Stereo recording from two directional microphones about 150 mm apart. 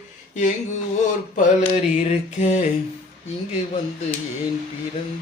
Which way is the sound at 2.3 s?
50° left (ahead or behind).